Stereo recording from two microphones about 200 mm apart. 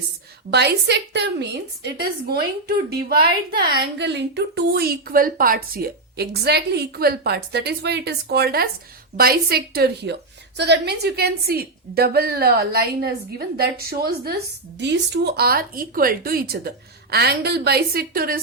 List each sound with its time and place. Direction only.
0.5 s a woman's voice: 55° right (ahead or behind)